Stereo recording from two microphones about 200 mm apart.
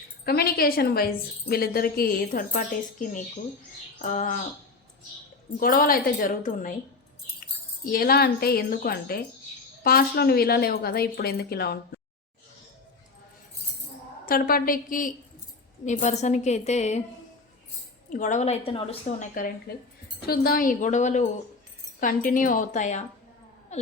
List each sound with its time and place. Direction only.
0.3 s a woman's voice: 50° left (ahead or behind)
5.5 s a woman's voice: 45° left (ahead or behind)
7.9 s a woman's voice: 50° left (ahead or behind)
14.3 s a woman's voice: 45° left (ahead or behind)
18.1 s a woman's voice: 40° left (ahead or behind)
19.7 s a woman's voice: 50° left (ahead or behind)
23.7 s a sound: 35° left (ahead or behind)